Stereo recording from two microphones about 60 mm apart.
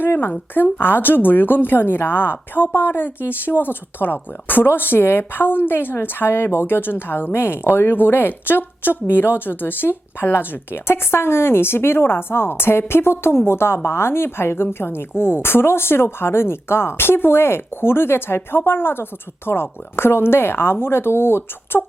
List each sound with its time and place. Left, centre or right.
0.0 s a woman's voice: left